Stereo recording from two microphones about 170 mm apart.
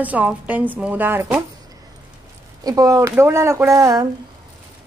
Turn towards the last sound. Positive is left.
turn(degrees=-20)  # may be behind; listen again after turning